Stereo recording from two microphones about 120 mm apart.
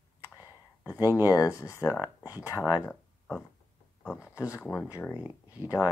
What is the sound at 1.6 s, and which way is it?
Speech, 25° left (ahead or behind).